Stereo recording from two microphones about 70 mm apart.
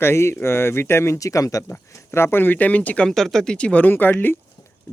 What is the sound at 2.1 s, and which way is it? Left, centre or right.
Speech, left.